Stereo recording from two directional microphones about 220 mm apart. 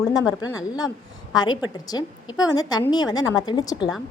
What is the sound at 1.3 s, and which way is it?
A woman's voice, 20° left (ahead or behind).